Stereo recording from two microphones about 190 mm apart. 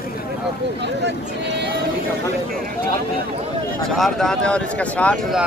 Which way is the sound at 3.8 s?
Centre (ahead or behind).